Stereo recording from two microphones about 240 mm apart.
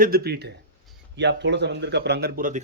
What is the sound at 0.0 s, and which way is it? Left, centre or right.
A man's voice, right.